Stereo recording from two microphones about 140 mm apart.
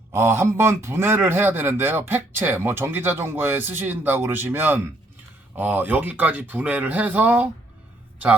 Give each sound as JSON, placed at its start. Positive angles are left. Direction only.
{"t": 0.1, "sound": "a man's voice", "side_deg": -20}